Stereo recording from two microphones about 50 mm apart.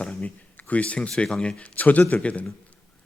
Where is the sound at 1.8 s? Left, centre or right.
Left.